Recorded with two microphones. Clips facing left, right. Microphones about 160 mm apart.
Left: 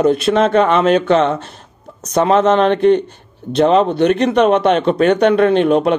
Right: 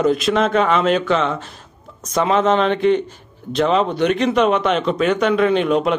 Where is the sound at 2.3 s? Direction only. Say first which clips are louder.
Left 4 dB; 45° left (ahead or behind).